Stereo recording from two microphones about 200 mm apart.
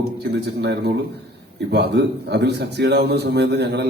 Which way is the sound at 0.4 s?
55° right (ahead or behind).